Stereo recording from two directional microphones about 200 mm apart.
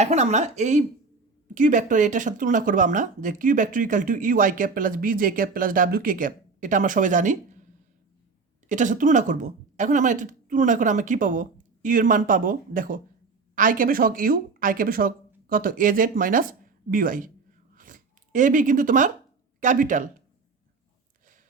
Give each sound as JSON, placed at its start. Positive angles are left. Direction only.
{"t": 0.0, "sound": "speech", "side_deg": -35}
{"t": 8.7, "sound": "speech", "side_deg": -40}
{"t": 17.7, "sound": "a sound", "side_deg": -40}
{"t": 19.5, "sound": "speech", "side_deg": -40}